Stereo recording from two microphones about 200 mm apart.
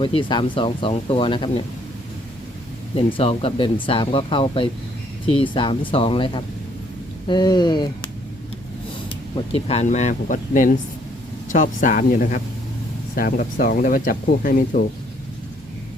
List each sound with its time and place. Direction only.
0.0 s speech: 25° left (ahead or behind)
2.9 s speech: 30° left (ahead or behind)